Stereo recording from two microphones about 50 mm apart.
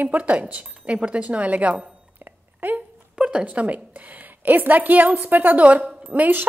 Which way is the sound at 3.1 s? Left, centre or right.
Right.